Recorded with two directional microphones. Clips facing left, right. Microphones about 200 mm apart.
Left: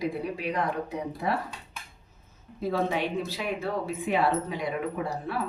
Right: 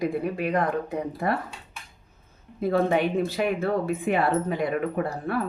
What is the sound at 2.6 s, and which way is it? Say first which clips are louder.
Speech: right 5 dB; 55° right (ahead or behind).